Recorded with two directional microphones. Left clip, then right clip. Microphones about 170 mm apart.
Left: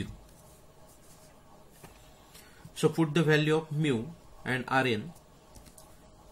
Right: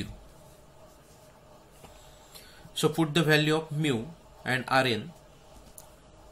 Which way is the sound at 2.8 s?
10° left (ahead or behind).